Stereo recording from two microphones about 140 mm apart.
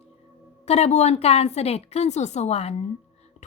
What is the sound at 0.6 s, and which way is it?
Speech, 50° left (ahead or behind).